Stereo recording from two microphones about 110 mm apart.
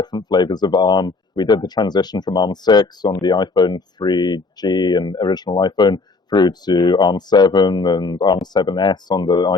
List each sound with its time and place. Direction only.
0.0 s speech: 40° left (ahead or behind)